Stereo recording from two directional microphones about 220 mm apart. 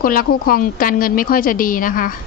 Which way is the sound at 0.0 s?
40° left (ahead or behind).